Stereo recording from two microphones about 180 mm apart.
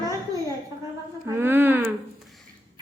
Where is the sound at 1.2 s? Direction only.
10° right (ahead or behind).